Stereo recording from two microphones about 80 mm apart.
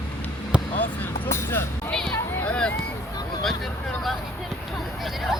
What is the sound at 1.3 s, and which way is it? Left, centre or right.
Music, left.